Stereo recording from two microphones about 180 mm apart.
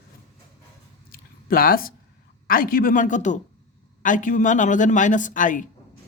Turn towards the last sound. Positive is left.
turn(degrees=45)  # may be behind; listen again after turning